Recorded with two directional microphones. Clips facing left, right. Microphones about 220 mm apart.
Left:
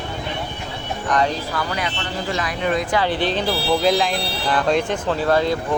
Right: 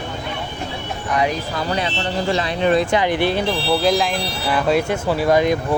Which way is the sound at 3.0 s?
15° right (ahead or behind).